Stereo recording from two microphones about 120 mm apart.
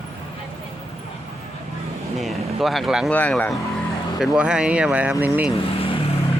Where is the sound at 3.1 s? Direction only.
10° left (ahead or behind).